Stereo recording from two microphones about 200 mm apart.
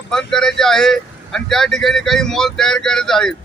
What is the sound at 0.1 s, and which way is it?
Speech, 5° left (ahead or behind).